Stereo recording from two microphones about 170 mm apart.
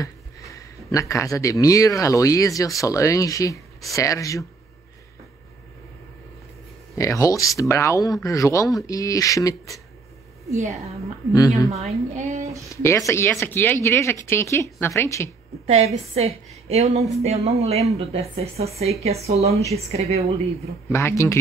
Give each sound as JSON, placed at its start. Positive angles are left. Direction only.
{"t": 0.0, "sound": "speech", "side_deg": 20}
{"t": 7.0, "sound": "speech", "side_deg": 20}
{"t": 10.5, "sound": "a woman's voice", "side_deg": -40}
{"t": 12.6, "sound": "speech", "side_deg": 15}
{"t": 15.6, "sound": "a woman's voice", "side_deg": -40}
{"t": 20.9, "sound": "speech", "side_deg": 15}